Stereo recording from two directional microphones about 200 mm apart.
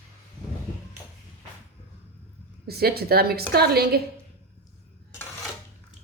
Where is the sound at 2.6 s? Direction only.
50° right (ahead or behind).